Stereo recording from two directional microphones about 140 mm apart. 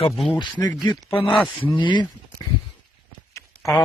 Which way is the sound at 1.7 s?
35° left (ahead or behind).